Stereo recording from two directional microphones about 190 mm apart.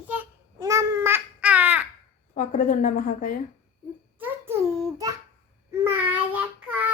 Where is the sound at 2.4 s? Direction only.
45° left (ahead or behind).